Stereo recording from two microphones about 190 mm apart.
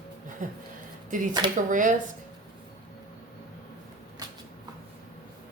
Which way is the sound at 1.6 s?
40° right (ahead or behind).